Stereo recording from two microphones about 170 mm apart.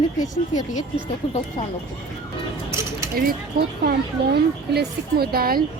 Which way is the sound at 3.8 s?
70° right (ahead or behind).